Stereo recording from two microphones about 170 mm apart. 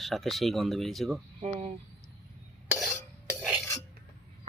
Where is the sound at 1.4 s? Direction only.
40° right (ahead or behind).